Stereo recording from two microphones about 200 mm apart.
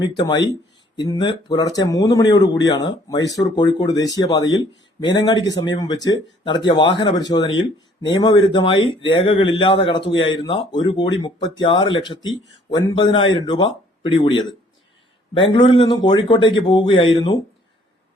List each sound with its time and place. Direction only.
0.0 s speech: 20° left (ahead or behind)
15.4 s speech: 25° left (ahead or behind)